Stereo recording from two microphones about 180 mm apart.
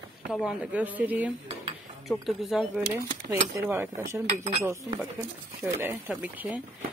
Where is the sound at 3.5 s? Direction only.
15° right (ahead or behind).